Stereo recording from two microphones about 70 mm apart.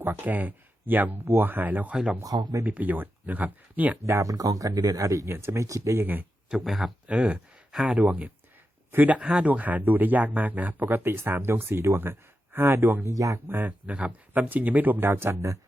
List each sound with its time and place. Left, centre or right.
0.0 s speech: right
2.2 s speech: right
2.6 s speech: right
4.0 s speech: right
5.3 s speech: right
6.6 s speech: centre
7.1 s speech: centre; by 13.1 s right
13.1 s speech: right
13.5 s speech: right